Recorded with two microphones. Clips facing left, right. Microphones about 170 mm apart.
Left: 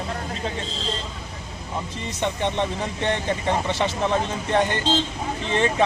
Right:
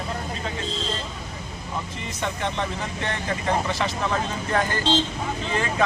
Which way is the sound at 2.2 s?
25° left (ahead or behind).